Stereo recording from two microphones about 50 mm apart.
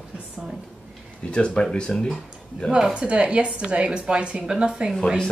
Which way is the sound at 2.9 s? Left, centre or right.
Centre.